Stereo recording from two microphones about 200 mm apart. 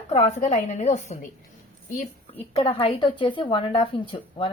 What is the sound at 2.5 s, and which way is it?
A woman's voice, 25° left (ahead or behind).